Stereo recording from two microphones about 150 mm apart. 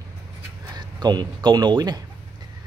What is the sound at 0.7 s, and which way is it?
Speech, 30° right (ahead or behind).